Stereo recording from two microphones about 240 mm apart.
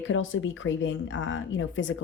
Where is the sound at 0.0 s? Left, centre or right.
Left.